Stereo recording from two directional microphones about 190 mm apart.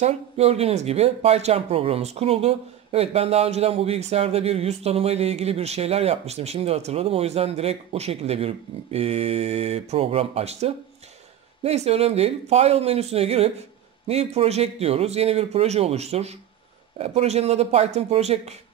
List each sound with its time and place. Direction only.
0.0 s speech: 35° right (ahead or behind)